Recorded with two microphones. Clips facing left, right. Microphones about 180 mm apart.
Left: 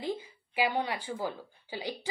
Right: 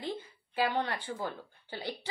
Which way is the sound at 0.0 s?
10° left (ahead or behind).